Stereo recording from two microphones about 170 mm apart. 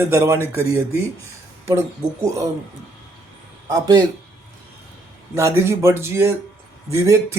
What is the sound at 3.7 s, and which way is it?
Speech, 20° right (ahead or behind).